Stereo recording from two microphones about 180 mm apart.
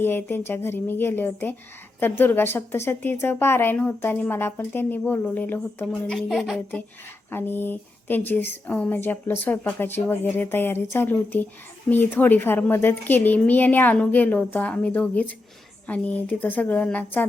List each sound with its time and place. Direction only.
0.0 s a woman's voice: 10° left (ahead or behind)
7.3 s a woman's voice: 10° left (ahead or behind)